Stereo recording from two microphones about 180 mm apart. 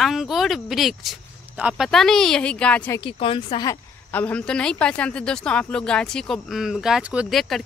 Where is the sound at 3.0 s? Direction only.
30° left (ahead or behind).